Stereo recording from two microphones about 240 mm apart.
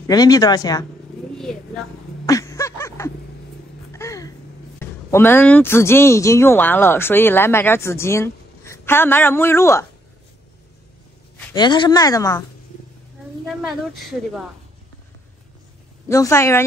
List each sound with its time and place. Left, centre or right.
0.0 s speech: centre
2.2 s a sound: centre
4.7 s speech: centre
11.5 s speech: centre
13.6 s speech: centre
16.1 s speech: centre